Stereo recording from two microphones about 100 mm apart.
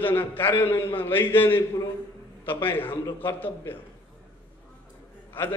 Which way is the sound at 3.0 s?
20° left (ahead or behind).